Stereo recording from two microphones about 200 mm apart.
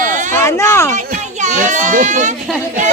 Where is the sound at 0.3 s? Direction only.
15° left (ahead or behind).